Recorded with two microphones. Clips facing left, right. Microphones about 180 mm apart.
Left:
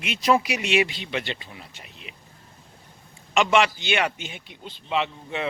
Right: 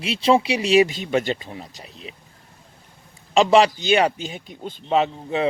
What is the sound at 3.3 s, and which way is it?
Speech, 35° right (ahead or behind).